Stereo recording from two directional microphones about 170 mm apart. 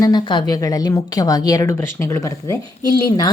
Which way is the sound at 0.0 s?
25° left (ahead or behind).